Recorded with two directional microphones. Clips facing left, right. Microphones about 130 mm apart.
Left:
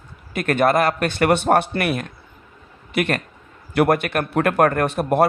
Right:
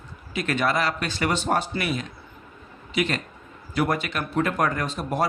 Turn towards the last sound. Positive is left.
turn(degrees=60)  # may be behind; listen again after turning